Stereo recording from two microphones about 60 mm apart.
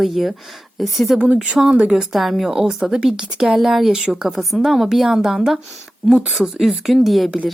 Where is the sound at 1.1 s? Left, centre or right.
Right.